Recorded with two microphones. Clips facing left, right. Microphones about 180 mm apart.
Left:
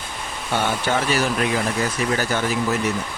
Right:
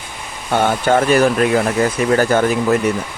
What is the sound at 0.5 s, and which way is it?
Speech, 50° right (ahead or behind).